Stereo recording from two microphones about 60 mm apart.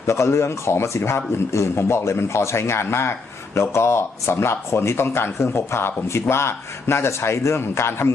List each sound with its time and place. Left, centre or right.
0.1 s speech: left